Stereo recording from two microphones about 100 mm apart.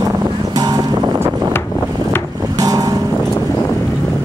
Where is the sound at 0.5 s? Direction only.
40° right (ahead or behind).